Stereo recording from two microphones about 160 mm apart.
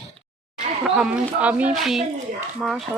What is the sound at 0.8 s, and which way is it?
Speech, 5° right (ahead or behind).